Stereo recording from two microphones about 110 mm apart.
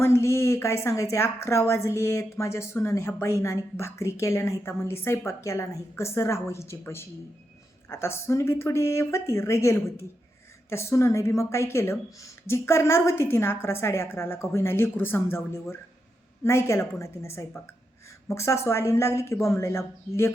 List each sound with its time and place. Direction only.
0.0 s a woman's voice: 25° left (ahead or behind)